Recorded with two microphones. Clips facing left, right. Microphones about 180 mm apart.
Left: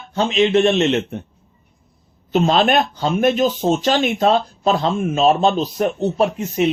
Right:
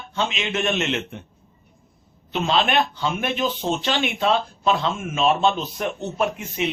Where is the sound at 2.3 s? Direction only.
40° left (ahead or behind).